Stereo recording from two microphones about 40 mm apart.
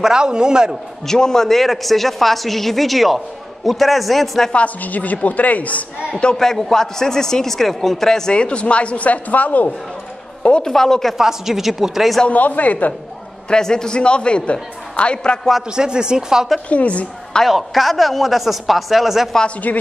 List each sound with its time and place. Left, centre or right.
0.0 s a man's voice: centre
1.0 s a woman's voice: centre
4.8 s speech: left
6.3 s a man's voice: centre
8.3 s speech: left
10.6 s a man's voice: centre
11.1 s speech: centre
12.3 s speech: left
13.5 s a man's voice: centre
15.7 s a man's voice: centre
16.6 s speech: left
17.5 s a woman's voice: centre
19.7 s speech: left